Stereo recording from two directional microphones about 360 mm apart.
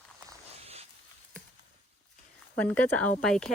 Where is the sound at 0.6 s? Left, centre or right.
Centre.